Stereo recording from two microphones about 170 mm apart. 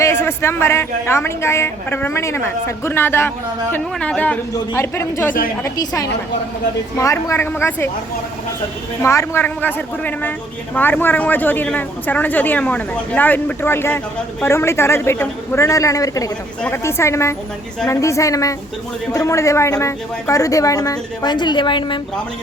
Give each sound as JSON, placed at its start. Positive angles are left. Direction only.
{"t": 0.0, "sound": "a woman's voice", "side_deg": 15}
{"t": 9.0, "sound": "a woman's voice", "side_deg": 15}